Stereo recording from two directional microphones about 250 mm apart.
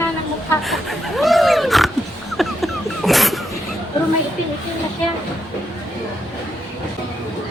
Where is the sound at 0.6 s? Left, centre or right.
Centre.